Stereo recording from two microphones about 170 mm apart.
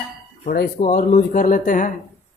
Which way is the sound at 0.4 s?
60° left (ahead or behind).